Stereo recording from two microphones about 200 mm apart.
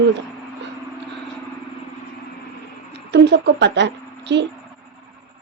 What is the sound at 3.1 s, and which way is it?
A woman's voice, 60° right (ahead or behind).